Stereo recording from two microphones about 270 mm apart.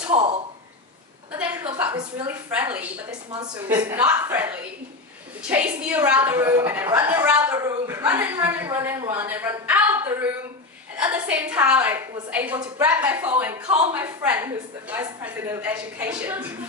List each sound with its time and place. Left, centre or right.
0.1 s speech: centre
1.3 s a sound: centre
3.8 s a woman's voice: centre